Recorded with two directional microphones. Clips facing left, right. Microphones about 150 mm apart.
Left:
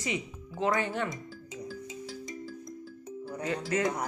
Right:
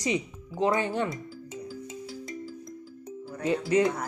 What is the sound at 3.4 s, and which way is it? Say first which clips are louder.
Speech: right 6 dB; 20° right (ahead or behind).